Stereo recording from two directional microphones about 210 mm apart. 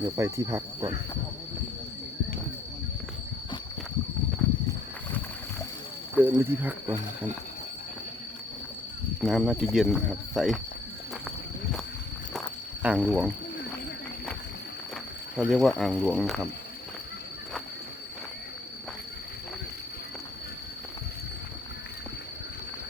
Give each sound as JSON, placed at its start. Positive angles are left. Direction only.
{"t": 0.0, "sound": "cricket", "side_deg": -15}
{"t": 6.1, "sound": "cricket", "side_deg": -10}
{"t": 9.2, "sound": "speech", "side_deg": 0}
{"t": 12.8, "sound": "speech", "side_deg": -5}
{"t": 15.4, "sound": "speech", "side_deg": 0}